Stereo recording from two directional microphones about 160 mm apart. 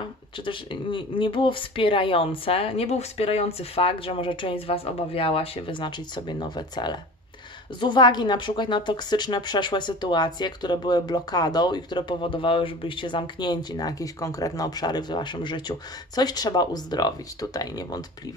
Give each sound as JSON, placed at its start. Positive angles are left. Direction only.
{"t": 0.5, "sound": "a woman's voice", "side_deg": 30}